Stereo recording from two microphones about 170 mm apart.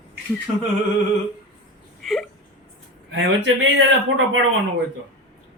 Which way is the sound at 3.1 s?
90° right.